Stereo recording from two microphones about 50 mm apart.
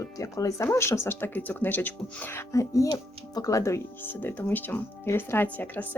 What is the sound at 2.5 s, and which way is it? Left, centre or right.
Speech, left.